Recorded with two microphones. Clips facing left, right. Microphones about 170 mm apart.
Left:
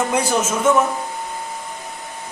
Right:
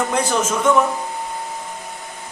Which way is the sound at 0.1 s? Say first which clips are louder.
Even; 10° left (ahead or behind).